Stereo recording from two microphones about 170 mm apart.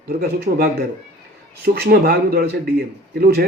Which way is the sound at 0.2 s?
65° right (ahead or behind).